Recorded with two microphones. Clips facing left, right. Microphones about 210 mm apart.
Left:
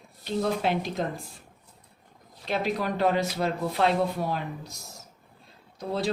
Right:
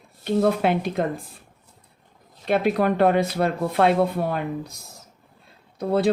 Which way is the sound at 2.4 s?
60° right (ahead or behind).